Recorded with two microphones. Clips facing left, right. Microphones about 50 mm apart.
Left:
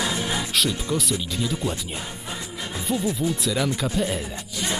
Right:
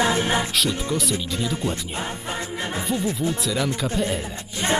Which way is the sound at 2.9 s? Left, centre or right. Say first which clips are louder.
Left 2 dB; centre.